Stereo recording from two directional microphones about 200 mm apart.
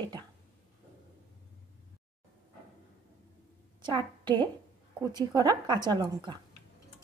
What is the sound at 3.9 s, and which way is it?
A woman's voice, 20° right (ahead or behind).